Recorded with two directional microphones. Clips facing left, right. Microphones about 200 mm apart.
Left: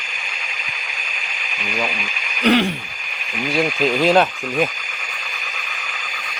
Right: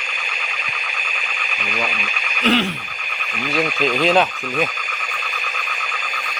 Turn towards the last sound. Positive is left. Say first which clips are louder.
# left 2 dB
turn(degrees=10)  # may be behind; listen again after turning